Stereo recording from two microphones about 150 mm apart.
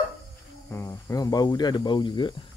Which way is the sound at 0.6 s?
20° left (ahead or behind).